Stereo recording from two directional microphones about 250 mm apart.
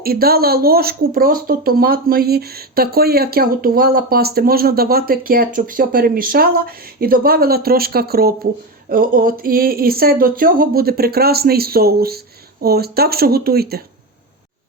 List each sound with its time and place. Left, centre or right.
0.0 s speech: right